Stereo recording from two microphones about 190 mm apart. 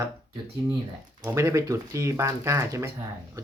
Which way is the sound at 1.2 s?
15° right (ahead or behind).